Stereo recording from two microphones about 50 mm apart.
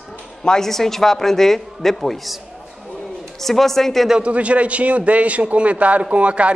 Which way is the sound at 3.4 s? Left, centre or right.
Centre.